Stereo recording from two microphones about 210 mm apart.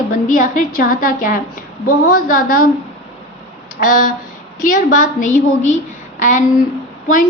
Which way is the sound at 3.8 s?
40° left (ahead or behind).